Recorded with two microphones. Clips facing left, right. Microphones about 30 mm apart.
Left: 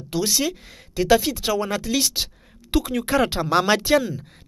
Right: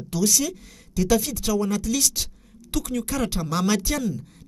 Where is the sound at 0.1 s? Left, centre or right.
Left.